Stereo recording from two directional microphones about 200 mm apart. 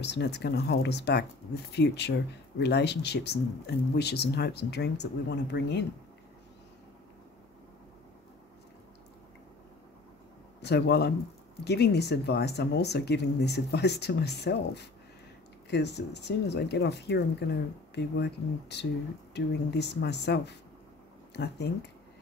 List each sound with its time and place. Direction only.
0.0 s speech: 55° left (ahead or behind)
10.6 s speech: 55° left (ahead or behind)